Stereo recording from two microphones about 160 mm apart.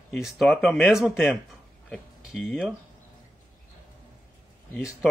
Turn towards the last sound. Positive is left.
turn(degrees=0)  # may be behind; listen again after turning